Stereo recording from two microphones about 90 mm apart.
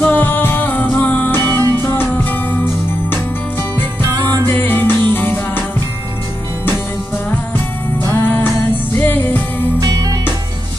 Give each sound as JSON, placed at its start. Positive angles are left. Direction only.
{"t": 0.0, "sound": "music", "side_deg": 20}
{"t": 1.5, "sound": "music", "side_deg": -45}
{"t": 1.9, "sound": "music", "side_deg": 20}
{"t": 4.0, "sound": "music", "side_deg": -45}
{"t": 4.5, "sound": "music", "side_deg": 20}
{"t": 8.1, "sound": "music", "side_deg": 20}
{"t": 9.8, "sound": "music", "side_deg": -45}